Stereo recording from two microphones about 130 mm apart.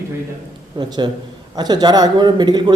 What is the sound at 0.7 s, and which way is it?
A man's voice, 35° right (ahead or behind).